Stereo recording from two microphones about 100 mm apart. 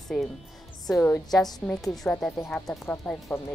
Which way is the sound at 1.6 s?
5° left (ahead or behind).